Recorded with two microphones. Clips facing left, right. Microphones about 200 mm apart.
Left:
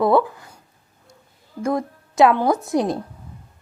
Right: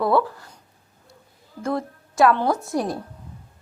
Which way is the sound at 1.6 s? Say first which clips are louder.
Left 3 dB; 15° left (ahead or behind).